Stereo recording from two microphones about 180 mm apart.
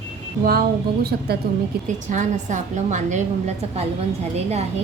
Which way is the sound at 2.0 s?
45° right (ahead or behind).